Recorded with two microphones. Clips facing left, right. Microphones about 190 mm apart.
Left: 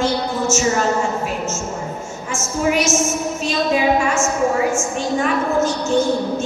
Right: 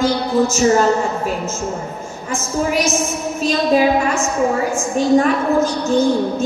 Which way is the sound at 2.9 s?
35° right (ahead or behind).